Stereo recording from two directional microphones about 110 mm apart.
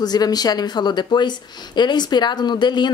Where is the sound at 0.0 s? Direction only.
35° left (ahead or behind).